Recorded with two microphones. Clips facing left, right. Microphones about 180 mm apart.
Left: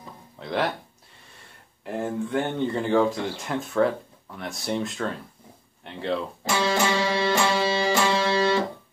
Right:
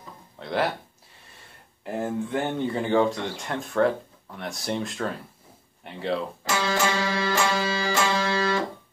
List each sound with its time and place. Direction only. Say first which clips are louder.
0.4 s speech: even; centre (ahead or behind)
1.9 s speech: even; centre (ahead or behind)
6.6 s music: left 2 dB; 30° left (ahead or behind)